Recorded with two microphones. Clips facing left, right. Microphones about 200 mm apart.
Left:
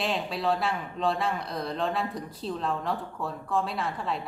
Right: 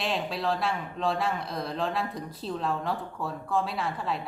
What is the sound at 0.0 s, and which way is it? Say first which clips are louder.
Speech: left 1 dB; centre (ahead or behind).